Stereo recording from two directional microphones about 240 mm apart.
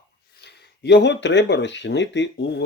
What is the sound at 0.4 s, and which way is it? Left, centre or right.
Speech, left.